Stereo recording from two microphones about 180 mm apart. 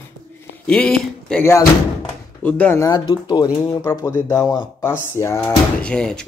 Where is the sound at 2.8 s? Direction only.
20° left (ahead or behind).